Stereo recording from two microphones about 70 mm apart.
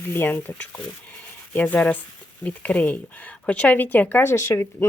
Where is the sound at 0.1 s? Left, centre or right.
Left.